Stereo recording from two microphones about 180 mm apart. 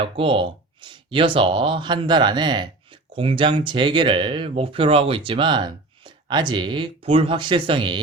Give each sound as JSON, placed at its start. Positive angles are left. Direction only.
{"t": 0.0, "sound": "speech", "side_deg": -30}